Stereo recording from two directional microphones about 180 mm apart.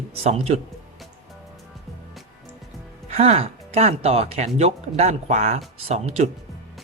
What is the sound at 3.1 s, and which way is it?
Speech, 35° right (ahead or behind).